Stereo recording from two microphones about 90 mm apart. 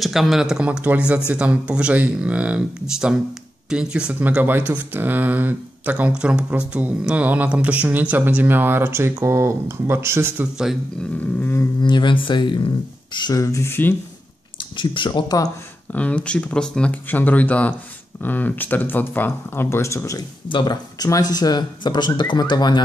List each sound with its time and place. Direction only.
0.0 s speech: centre (ahead or behind); by 10.5 s 25° right (ahead or behind)
11.8 s speech: 60° left (ahead or behind)
13.3 s speech: 35° left (ahead or behind)
14.6 s speech: 65° left (ahead or behind)
15.2 s speech: 45° left (ahead or behind)
15.9 s speech: 15° left (ahead or behind); by 20.2 s 35° left (ahead or behind)
20.4 s speech: 65° left (ahead or behind)
21.0 s speech: 45° left (ahead or behind)